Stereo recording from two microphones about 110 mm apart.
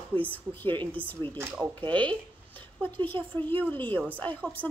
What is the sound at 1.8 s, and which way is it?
A woman's voice, 15° left (ahead or behind).